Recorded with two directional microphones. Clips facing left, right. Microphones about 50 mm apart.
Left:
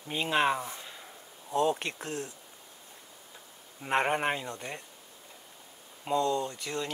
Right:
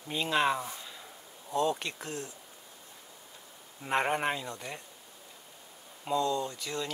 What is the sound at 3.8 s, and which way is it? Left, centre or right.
Speech, centre.